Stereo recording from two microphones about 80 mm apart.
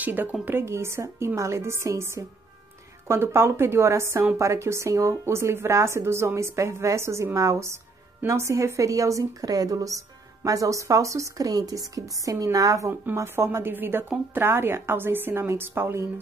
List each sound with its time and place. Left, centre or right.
0.0 s a woman's voice: right
13.1 s a woman's voice: right